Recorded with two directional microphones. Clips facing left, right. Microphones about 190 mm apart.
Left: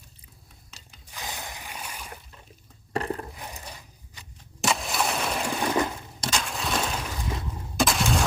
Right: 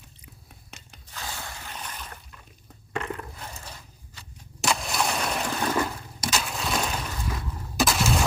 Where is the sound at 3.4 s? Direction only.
15° left (ahead or behind).